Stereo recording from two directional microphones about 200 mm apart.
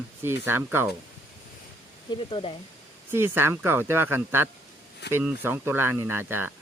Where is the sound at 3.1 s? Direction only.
10° right (ahead or behind).